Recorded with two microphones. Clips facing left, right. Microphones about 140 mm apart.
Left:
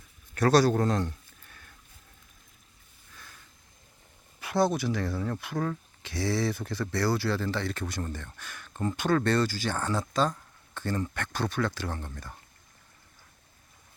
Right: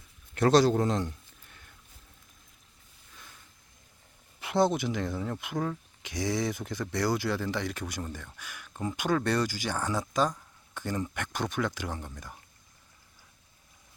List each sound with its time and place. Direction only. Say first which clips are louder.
0.3 s a man's voice: even; 20° right (ahead or behind)
4.4 s speech: even; 20° right (ahead or behind)